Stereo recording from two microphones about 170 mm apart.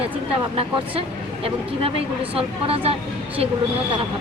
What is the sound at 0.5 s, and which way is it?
Speech, 35° right (ahead or behind).